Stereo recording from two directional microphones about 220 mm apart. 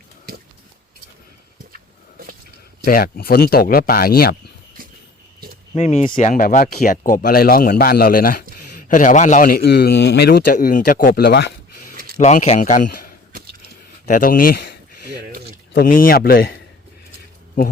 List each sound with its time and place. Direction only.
1.7 s a sound: 40° right (ahead or behind)
2.8 s speech: 40° left (ahead or behind)
5.7 s speech: 30° left (ahead or behind); by 11.4 s 50° left (ahead or behind)
12.1 s speech: 30° left (ahead or behind)
15.7 s speech: 40° left (ahead or behind)